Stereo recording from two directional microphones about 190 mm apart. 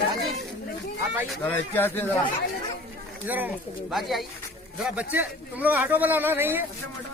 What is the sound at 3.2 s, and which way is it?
A man's voice, 10° right (ahead or behind).